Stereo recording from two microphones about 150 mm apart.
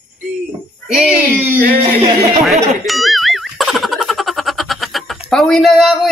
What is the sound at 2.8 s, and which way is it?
Boing, centre (ahead or behind).